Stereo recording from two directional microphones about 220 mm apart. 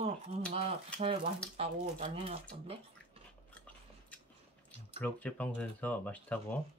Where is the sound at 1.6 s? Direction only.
25° right (ahead or behind).